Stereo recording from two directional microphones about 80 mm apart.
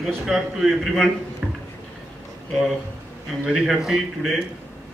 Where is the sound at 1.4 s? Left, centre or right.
Centre.